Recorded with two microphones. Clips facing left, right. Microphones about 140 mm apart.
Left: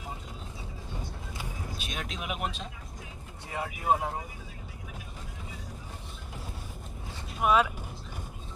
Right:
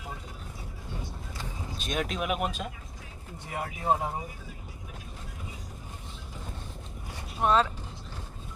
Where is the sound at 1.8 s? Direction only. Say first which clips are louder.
Right 10 dB; 50° right (ahead or behind).